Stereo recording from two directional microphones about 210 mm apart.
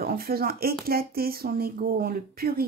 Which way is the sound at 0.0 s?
45° right (ahead or behind).